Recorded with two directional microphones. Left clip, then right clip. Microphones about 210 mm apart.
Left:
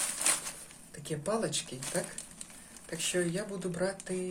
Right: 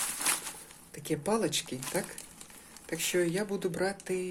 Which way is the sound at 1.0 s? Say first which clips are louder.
Right 3 dB; 35° right (ahead or behind).